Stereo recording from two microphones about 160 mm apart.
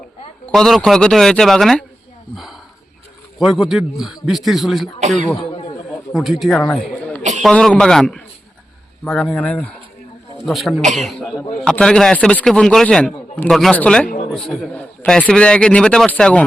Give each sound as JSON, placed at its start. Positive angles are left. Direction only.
{"t": 0.5, "sound": "a man's voice", "side_deg": 5}
{"t": 4.9, "sound": "speech", "side_deg": -50}
{"t": 5.5, "sound": "a sound", "side_deg": 40}
{"t": 6.1, "sound": "speech", "side_deg": 0}
{"t": 7.2, "sound": "a sound", "side_deg": -50}
{"t": 7.4, "sound": "a man's voice", "side_deg": 5}